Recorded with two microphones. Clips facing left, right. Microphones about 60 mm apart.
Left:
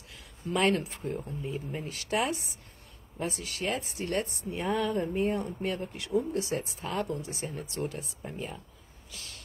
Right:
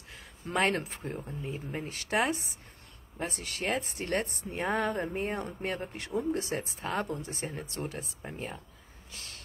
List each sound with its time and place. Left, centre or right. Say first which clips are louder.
0.1 s a sound: left 1 dB; right
0.9 s speech: left 3 dB; right
3.2 s speech: left 2 dB; right